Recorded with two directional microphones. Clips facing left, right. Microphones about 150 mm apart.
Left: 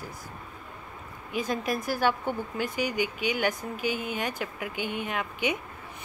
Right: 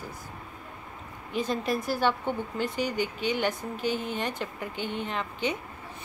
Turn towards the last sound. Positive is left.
turn(degrees=10)  # may be behind; listen again after turning